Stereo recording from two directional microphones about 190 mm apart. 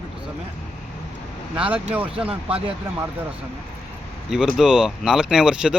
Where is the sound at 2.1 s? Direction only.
30° right (ahead or behind).